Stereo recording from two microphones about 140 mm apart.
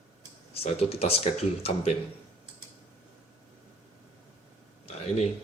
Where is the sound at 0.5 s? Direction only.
45° left (ahead or behind).